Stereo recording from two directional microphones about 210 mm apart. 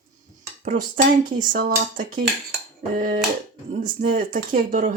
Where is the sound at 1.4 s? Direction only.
40° right (ahead or behind).